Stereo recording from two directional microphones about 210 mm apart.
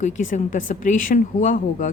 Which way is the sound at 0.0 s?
35° left (ahead or behind).